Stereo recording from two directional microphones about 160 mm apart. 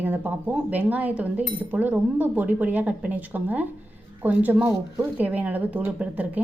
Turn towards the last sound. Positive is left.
turn(degrees=-10)  # may be behind; listen again after turning